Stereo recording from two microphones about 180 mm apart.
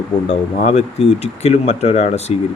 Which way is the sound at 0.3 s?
40° left (ahead or behind).